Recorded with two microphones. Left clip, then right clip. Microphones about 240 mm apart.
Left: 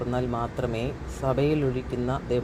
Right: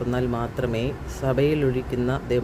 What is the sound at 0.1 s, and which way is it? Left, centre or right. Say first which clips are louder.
Speech: right 3 dB; centre.